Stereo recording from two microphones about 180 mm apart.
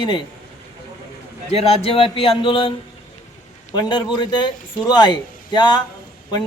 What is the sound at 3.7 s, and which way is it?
A man's voice, 25° left (ahead or behind).